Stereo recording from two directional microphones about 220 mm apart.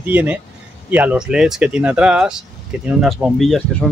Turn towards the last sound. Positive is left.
turn(degrees=0)  # may be behind; listen again after turning